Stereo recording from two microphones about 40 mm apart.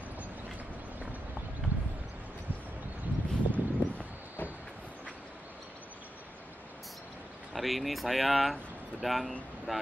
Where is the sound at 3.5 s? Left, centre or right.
Left.